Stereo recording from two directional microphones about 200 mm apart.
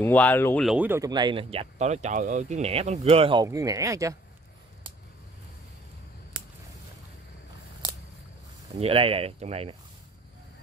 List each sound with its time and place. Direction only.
0.0 s speech: 10° left (ahead or behind)
0.7 s speech: 10° right (ahead or behind); by 3.4 s 25° right (ahead or behind)
3.4 s speech: 15° right (ahead or behind)
8.7 s speech: 30° right (ahead or behind)